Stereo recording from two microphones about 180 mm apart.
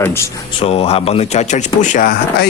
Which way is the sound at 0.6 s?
35° left (ahead or behind).